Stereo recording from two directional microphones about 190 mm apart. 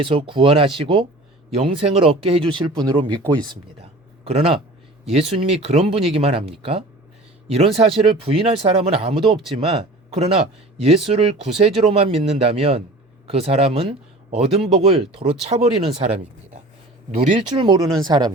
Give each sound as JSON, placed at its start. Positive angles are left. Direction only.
{"t": 0.0, "sound": "speech", "side_deg": -30}